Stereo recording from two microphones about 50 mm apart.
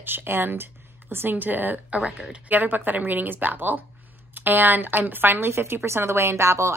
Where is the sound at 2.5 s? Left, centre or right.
Right.